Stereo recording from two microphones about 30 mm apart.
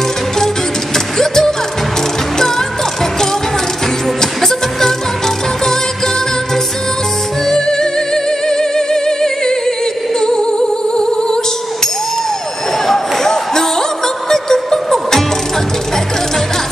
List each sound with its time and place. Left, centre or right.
0.9 s music: centre
4.2 s music: centre
7.4 s music: centre
12.8 s music: centre